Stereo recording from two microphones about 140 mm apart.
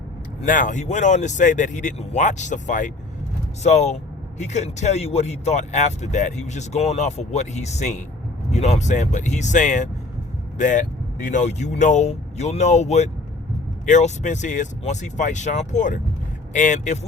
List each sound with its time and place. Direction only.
0.4 s speech: 70° left (ahead or behind)
3.6 s speech: 55° left (ahead or behind)